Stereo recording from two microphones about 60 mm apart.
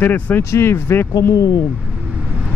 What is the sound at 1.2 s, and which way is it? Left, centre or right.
Speech, left.